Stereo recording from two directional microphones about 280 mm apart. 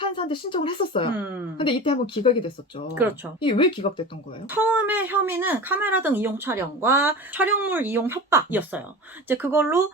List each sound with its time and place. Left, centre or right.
0.0 s speech: centre
1.1 s speech: centre
1.5 s speech: centre
4.4 s speech: centre